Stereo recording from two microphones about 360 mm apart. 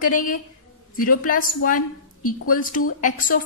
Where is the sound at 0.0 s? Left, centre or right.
Left.